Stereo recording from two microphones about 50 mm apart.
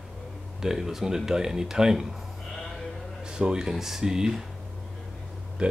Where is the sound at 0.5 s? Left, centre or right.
Centre.